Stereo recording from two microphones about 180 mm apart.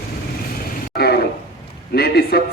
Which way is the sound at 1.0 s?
55° left (ahead or behind).